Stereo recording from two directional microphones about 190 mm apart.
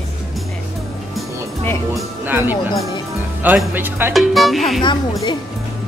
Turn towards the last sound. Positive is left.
turn(degrees=25)  # may be behind; listen again after turning